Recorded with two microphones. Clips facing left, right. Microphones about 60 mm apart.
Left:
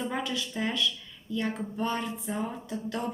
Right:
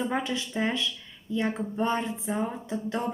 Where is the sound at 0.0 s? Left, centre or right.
Right.